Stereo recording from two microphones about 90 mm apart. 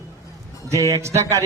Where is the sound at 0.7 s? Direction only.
35° right (ahead or behind).